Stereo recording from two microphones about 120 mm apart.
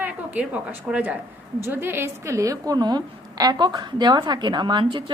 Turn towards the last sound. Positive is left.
turn(degrees=-40)  # may be behind; listen again after turning